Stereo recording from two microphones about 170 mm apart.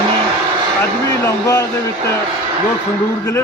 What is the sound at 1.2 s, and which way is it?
Speech, 15° left (ahead or behind).